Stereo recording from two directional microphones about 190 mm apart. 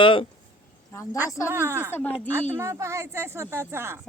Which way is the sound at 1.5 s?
10° right (ahead or behind).